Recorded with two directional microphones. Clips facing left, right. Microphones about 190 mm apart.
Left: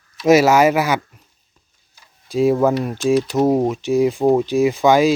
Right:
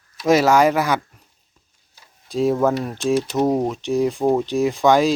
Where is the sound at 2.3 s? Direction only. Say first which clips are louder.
Left 3 dB; centre (ahead or behind).